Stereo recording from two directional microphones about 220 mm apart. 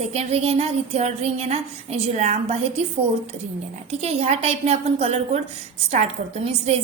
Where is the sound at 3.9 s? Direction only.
30° right (ahead or behind).